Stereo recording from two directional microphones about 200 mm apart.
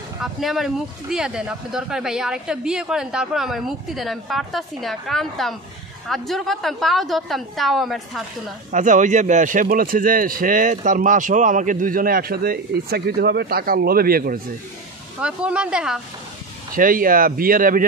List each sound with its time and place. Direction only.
0.2 s speech: centre (ahead or behind)
8.7 s a man's voice: 40° right (ahead or behind)
15.1 s speech: 5° right (ahead or behind)
16.7 s a man's voice: 45° right (ahead or behind)